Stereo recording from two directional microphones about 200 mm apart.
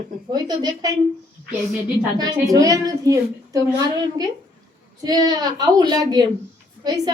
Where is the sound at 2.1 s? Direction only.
20° right (ahead or behind).